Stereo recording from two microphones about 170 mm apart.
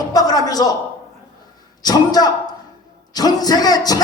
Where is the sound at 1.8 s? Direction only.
25° left (ahead or behind).